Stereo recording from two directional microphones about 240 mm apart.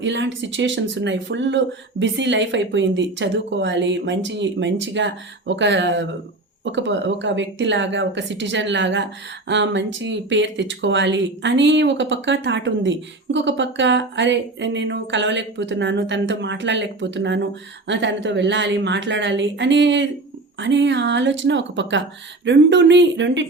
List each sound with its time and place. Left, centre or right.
0.0 s speech: right